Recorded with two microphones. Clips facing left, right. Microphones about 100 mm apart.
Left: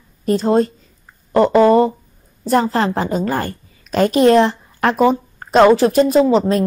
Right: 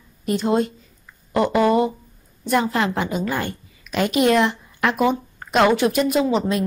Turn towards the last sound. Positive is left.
turn(degrees=35)  # may be behind; listen again after turning